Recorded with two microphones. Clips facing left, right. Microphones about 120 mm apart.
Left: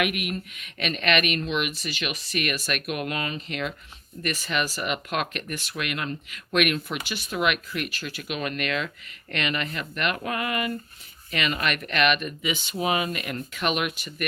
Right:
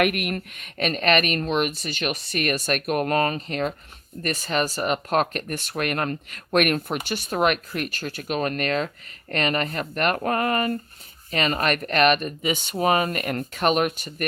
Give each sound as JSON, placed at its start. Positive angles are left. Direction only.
{"t": 0.0, "sound": "speech", "side_deg": -55}